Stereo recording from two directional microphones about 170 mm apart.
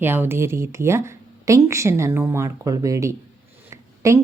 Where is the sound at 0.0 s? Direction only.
10° right (ahead or behind).